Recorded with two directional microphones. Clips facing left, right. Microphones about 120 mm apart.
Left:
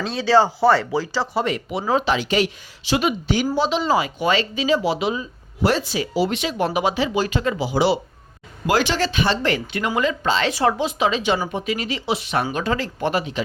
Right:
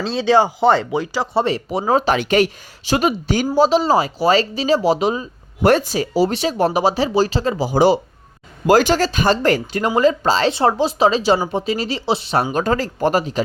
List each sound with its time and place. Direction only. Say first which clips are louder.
0.0 s speech: right 2 dB; 25° right (ahead or behind)
1.3 s speech: right 4 dB; 30° right (ahead or behind)